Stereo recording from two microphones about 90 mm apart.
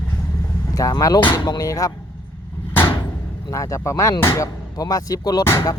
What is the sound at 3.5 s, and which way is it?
Speech, 35° left (ahead or behind).